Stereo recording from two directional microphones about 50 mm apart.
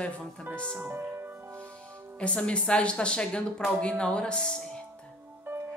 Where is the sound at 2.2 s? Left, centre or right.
Left.